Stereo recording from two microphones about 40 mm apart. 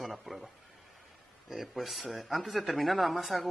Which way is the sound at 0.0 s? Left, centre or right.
Centre.